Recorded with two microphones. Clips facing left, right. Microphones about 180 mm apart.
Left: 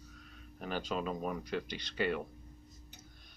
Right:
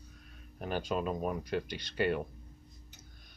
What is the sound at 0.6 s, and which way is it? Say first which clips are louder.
Speech: right 3 dB; 45° right (ahead or behind).